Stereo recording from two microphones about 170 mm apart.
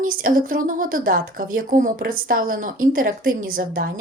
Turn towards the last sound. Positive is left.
turn(degrees=-55)  # may be behind; listen again after turning